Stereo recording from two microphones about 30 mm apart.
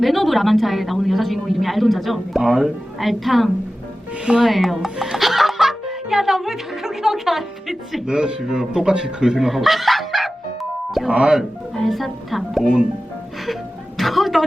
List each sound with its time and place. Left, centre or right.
0.0 s a woman's voice: centre
8.0 s a man's voice: right
9.4 s music: centre
11.1 s speech: right
11.8 s a woman's voice: centre
13.5 s music: centre